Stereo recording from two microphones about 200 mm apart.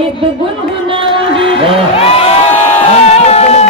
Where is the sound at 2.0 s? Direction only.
30° left (ahead or behind).